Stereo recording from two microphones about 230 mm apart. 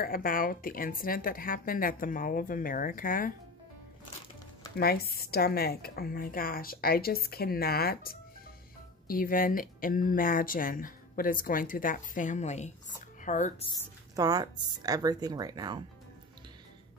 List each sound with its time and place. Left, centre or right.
0.0 s speech: left
4.7 s speech: left
14.1 s speech: centre